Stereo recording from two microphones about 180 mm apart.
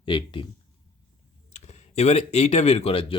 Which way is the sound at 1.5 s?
40° left (ahead or behind).